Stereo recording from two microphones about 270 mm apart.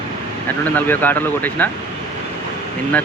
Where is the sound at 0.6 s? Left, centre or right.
Centre.